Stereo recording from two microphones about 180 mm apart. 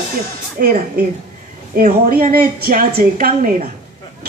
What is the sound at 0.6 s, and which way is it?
A woman's voice, 55° right (ahead or behind).